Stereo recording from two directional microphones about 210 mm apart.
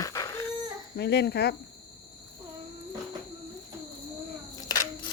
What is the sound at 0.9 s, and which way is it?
Speech, 55° left (ahead or behind).